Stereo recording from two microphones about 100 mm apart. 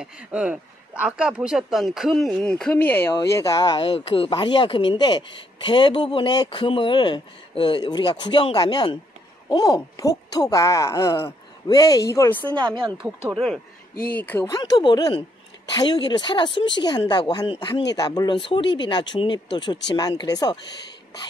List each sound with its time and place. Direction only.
0.0 s speech: 10° right (ahead or behind); by 3.2 s 20° left (ahead or behind)
3.2 s speech: 35° left (ahead or behind)
3.8 s speech: 65° left (ahead or behind)
4.3 s speech: 50° left (ahead or behind); by 12.3 s 35° left (ahead or behind)
12.5 s speech: 50° right (ahead or behind)
13.3 s speech: 5° left (ahead or behind)
14.5 s speech: 50° left (ahead or behind)
18.4 s speech: 55° left (ahead or behind)